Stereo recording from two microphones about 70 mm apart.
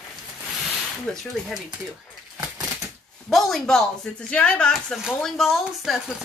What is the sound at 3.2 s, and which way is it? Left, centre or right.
Speech, centre.